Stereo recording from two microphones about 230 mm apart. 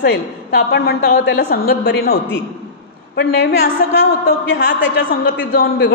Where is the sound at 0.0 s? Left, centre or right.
Left.